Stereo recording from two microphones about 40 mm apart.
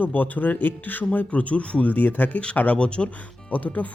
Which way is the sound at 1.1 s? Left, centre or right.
Left.